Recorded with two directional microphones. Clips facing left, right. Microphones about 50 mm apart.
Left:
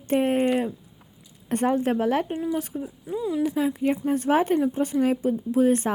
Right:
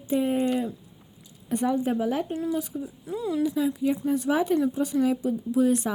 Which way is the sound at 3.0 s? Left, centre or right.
Centre.